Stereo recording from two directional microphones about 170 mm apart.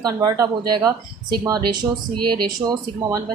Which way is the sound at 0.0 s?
25° right (ahead or behind).